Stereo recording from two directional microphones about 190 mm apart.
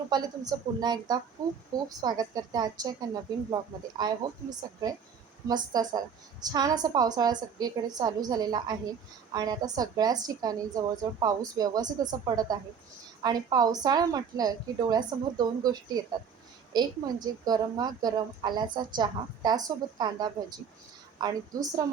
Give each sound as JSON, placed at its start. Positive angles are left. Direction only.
{"t": 0.1, "sound": "a woman's voice", "side_deg": -20}